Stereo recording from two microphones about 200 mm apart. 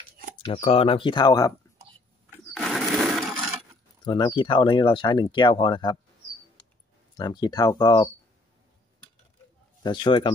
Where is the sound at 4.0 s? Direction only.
25° left (ahead or behind).